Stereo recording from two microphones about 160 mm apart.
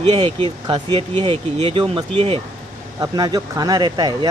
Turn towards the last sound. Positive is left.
turn(degrees=-25)  # may be behind; listen again after turning